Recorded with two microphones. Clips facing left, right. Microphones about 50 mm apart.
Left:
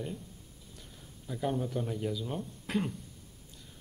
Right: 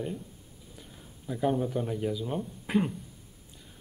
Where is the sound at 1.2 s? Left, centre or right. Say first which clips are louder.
Right 5 dB; centre.